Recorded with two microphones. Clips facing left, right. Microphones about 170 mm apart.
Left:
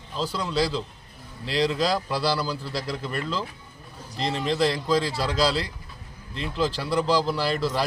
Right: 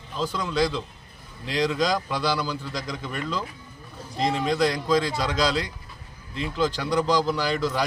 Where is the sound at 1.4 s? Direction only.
30° left (ahead or behind).